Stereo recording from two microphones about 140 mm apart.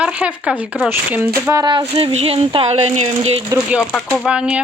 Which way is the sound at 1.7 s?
40° right (ahead or behind).